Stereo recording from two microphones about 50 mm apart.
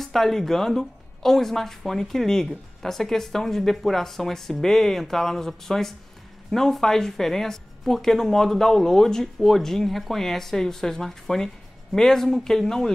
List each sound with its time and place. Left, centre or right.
0.0 s a woman's voice: centre